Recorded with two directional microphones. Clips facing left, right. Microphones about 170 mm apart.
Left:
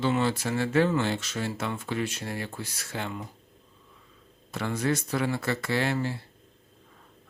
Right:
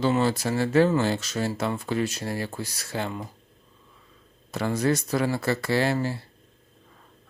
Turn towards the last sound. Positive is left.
turn(degrees=-35)  # may be behind; listen again after turning